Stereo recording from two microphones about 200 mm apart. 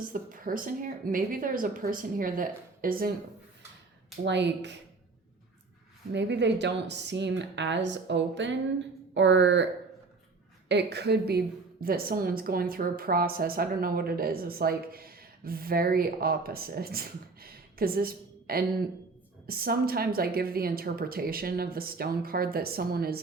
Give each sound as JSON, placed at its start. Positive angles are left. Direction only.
{"t": 0.1, "sound": "a woman's voice", "side_deg": -45}
{"t": 4.2, "sound": "speech", "side_deg": -60}
{"t": 6.1, "sound": "speech", "side_deg": -60}
{"t": 10.7, "sound": "a woman's voice", "side_deg": -60}